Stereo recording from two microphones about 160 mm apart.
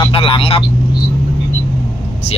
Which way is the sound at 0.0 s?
35° left (ahead or behind).